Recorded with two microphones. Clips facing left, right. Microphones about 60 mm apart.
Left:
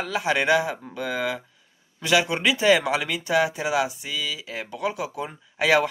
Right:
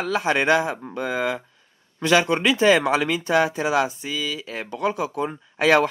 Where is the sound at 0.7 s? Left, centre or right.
Right.